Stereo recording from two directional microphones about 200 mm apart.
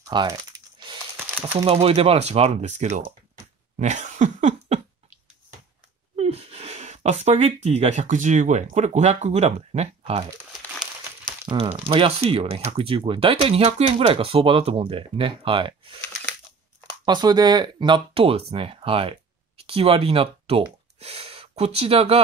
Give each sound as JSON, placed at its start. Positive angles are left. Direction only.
{"t": 0.0, "sound": "crumpling", "side_deg": -20}
{"t": 1.1, "sound": "crumpling", "side_deg": -10}
{"t": 1.5, "sound": "speech", "side_deg": -30}
{"t": 3.7, "sound": "cough", "side_deg": -35}
{"t": 6.1, "sound": "speech", "side_deg": -30}
{"t": 11.5, "sound": "speech", "side_deg": -30}
{"t": 17.0, "sound": "speech", "side_deg": -20}